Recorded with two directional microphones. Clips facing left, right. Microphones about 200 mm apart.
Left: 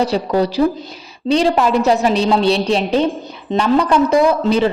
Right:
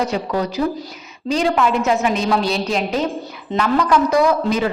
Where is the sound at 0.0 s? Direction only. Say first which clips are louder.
Left 5 dB; 30° left (ahead or behind).